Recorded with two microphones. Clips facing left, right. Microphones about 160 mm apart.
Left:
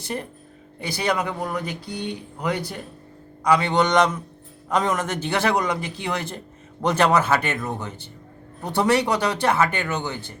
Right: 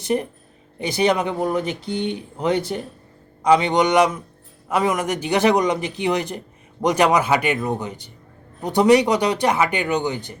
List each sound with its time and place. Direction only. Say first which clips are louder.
0.0 s speech: right 8 dB; 20° right (ahead or behind)